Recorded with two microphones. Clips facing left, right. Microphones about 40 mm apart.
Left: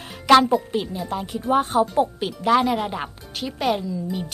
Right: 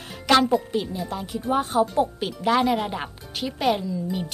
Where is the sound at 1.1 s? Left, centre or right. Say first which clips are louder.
Left 3 dB; left.